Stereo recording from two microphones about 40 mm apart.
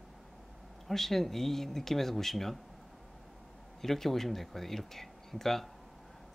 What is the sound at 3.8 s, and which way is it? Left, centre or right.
Speech, centre.